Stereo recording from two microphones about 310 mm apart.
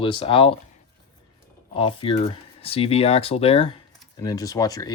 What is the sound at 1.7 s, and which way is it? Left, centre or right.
Speech, centre.